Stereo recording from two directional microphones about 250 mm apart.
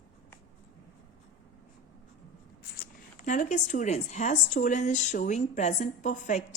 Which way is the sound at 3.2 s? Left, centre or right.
Left.